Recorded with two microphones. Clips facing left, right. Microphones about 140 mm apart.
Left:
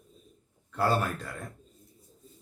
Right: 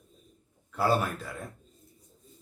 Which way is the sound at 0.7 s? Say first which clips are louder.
Right 1 dB; 5° right (ahead or behind).